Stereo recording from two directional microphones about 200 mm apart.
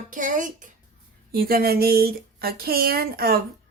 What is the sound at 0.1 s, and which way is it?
Speech, 40° right (ahead or behind).